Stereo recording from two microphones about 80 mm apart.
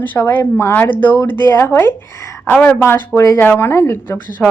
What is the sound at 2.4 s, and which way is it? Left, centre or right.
Speech, centre.